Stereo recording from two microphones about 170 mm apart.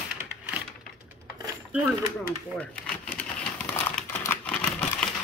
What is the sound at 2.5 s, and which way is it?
Typewriter, 5° left (ahead or behind).